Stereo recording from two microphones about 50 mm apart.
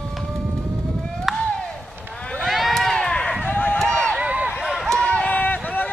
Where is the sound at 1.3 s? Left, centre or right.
Centre.